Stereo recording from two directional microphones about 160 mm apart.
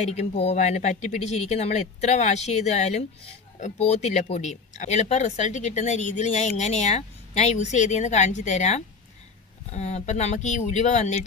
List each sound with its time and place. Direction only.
0.0 s speech: 45° left (ahead or behind)